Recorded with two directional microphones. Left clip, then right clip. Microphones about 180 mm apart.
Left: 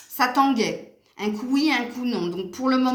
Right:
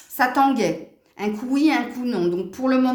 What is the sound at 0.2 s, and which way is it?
A woman's voice, 45° right (ahead or behind).